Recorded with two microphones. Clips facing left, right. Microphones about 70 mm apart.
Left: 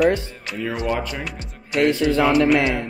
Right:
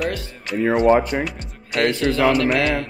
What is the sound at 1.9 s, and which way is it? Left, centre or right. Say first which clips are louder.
Speech: right 1 dB; left.